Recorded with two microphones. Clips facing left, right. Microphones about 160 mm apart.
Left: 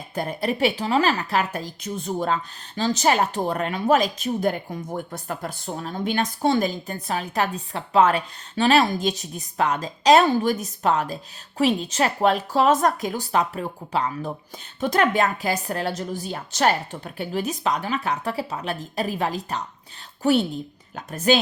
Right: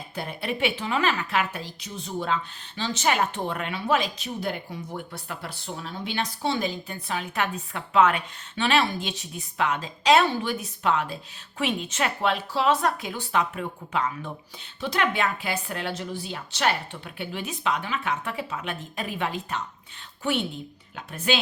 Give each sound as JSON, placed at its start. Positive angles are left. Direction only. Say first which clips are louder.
{"t": 0.1, "sound": "a woman's voice", "louder": "left 6 dB", "side_deg": 45}
{"t": 14.8, "sound": "a woman's voice", "louder": "left 5 dB", "side_deg": 45}